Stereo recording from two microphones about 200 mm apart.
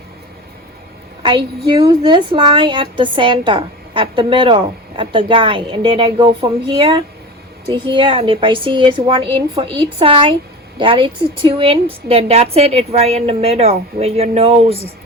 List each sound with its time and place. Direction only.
1.2 s a woman's voice: 20° right (ahead or behind)